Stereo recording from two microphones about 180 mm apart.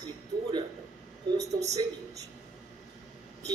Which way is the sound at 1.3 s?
20° right (ahead or behind).